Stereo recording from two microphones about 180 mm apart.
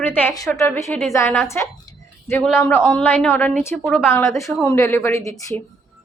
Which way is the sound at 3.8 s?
Centre (ahead or behind).